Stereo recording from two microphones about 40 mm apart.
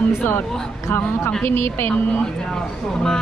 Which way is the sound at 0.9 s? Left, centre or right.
Left.